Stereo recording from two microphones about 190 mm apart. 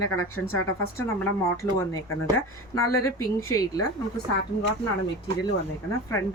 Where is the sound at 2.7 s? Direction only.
15° left (ahead or behind).